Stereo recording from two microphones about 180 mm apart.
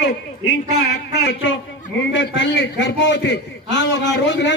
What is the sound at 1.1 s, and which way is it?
Speech, 80° left.